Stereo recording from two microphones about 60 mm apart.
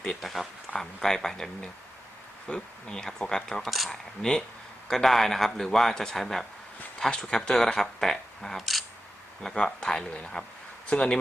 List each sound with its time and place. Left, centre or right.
0.0 s speech: centre
9.4 s speech: centre